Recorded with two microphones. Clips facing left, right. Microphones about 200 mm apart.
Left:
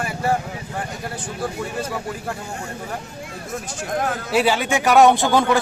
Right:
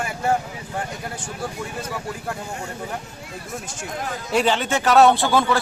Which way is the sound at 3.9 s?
55° left (ahead or behind).